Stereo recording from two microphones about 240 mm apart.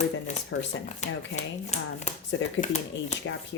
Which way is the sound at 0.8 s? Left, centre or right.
Left.